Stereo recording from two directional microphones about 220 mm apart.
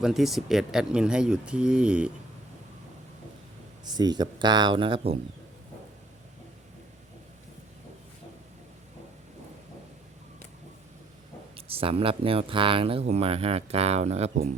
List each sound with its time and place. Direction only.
0.0 s speech: centre (ahead or behind)
3.8 s speech: 20° right (ahead or behind)
11.5 s speech: 25° right (ahead or behind)